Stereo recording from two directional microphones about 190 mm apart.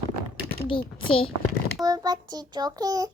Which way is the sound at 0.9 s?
30° left (ahead or behind).